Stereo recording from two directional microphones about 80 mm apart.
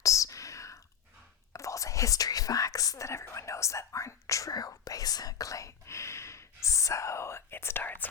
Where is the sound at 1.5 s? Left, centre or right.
Left.